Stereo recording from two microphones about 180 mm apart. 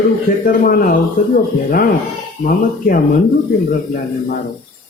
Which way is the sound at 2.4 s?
50° left (ahead or behind).